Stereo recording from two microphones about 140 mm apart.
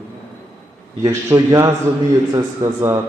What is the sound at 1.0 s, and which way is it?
A man's voice, 25° right (ahead or behind).